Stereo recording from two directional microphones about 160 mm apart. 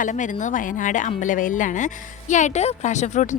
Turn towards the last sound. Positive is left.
turn(degrees=50)  # may be behind; listen again after turning